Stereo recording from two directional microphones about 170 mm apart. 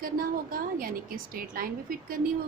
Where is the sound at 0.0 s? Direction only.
55° right (ahead or behind).